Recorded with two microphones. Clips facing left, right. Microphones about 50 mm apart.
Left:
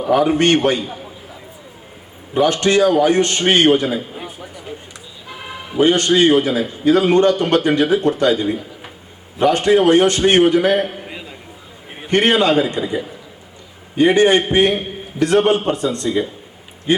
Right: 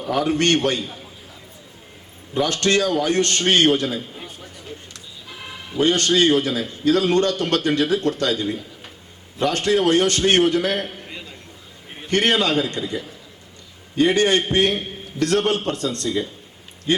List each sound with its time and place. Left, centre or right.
0.2 s a man's voice: centre
2.3 s a man's voice: centre
11.1 s a sound: centre
11.9 s a man's voice: centre